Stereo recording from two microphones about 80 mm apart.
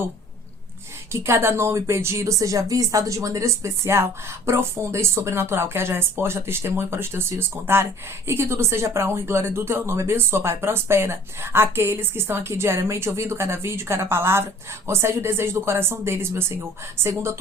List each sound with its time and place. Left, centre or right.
1.1 s speech: right